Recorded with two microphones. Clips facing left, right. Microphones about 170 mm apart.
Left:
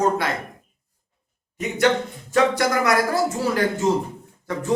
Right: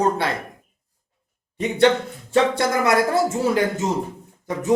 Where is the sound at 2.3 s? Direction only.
25° right (ahead or behind).